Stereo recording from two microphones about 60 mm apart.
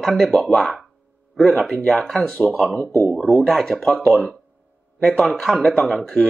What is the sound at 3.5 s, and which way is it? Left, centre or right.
Speech, centre.